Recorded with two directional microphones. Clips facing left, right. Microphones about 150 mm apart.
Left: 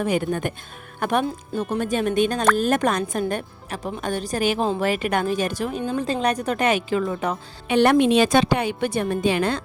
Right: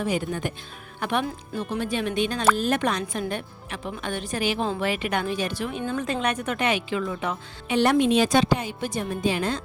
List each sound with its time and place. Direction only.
0.0 s a woman's voice: 55° left (ahead or behind)
7.7 s a woman's voice: 60° left (ahead or behind)